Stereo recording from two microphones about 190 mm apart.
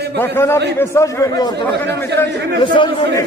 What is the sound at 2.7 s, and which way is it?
Speech, 25° left (ahead or behind).